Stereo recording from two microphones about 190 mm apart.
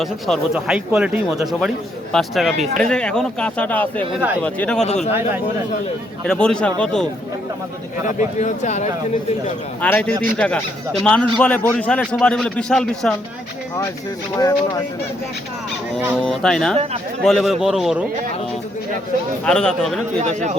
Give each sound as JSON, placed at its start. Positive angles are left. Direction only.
{"t": 0.0, "sound": "a man's voice", "side_deg": 0}
{"t": 6.2, "sound": "a man's voice", "side_deg": 5}
{"t": 8.0, "sound": "speech", "side_deg": 40}
{"t": 9.8, "sound": "a man's voice", "side_deg": 5}
{"t": 14.3, "sound": "speech", "side_deg": 20}
{"t": 16.0, "sound": "a man's voice", "side_deg": 0}
{"t": 19.5, "sound": "a man's voice", "side_deg": 5}
{"t": 20.2, "sound": "speech", "side_deg": -40}